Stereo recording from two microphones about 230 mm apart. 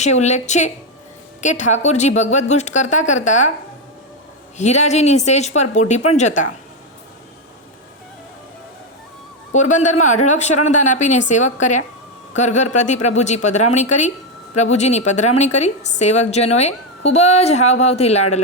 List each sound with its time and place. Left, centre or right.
0.0 s a woman's voice: left
4.5 s a woman's voice: left
9.5 s a woman's voice: left